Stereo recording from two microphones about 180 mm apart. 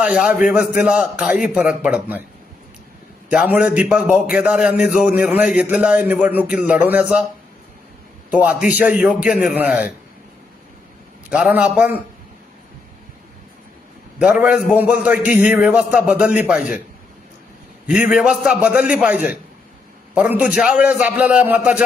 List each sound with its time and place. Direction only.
0.0 s a man's voice: 5° right (ahead or behind)
3.2 s a man's voice: 10° right (ahead or behind)
8.3 s a man's voice: 5° right (ahead or behind)
11.3 s a man's voice: 5° right (ahead or behind)
14.2 s a man's voice: 5° right (ahead or behind)
17.9 s a man's voice: 5° right (ahead or behind)